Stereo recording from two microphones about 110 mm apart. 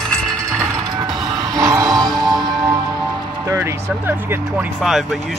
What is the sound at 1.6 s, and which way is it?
Music, 30° right (ahead or behind).